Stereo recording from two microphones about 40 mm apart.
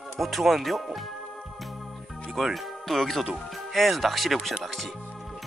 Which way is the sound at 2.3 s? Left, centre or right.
Centre.